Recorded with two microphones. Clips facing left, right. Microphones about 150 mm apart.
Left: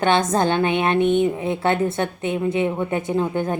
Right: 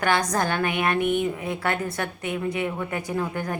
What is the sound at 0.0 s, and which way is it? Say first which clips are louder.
A woman's voice: left 5 dB; 25° left (ahead or behind).